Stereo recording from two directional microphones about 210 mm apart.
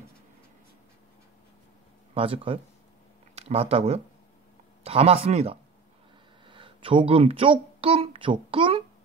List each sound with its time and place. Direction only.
2.1 s a child's voice: 25° right (ahead or behind)